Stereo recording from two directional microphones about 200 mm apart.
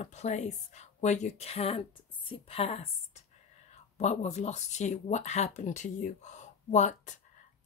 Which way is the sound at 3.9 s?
35° left (ahead or behind).